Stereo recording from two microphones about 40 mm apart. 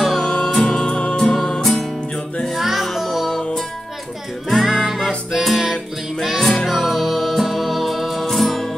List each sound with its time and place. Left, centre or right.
0.2 s music: centre
1.3 s music: centre
2.4 s music: centre